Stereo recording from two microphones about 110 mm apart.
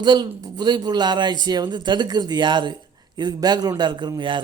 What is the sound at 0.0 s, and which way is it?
A man's voice, 40° right (ahead or behind).